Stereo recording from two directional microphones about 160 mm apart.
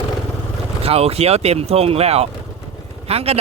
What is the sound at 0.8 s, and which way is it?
Speech, 40° right (ahead or behind).